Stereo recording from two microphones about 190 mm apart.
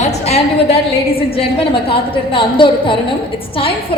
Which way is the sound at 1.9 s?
25° left (ahead or behind).